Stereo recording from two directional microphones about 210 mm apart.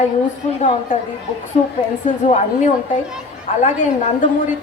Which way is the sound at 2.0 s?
35° left (ahead or behind).